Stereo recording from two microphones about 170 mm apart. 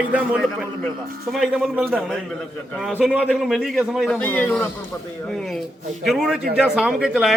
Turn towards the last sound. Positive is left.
turn(degrees=-5)  # may be behind; listen again after turning